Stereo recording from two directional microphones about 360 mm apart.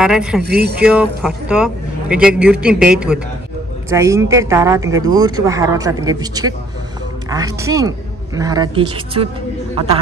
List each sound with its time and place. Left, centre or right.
0.0 s a man's voice: centre
0.4 s speech: right
0.8 s a man's voice: centre